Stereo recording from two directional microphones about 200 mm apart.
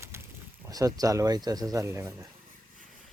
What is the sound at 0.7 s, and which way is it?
Speech, 20° right (ahead or behind).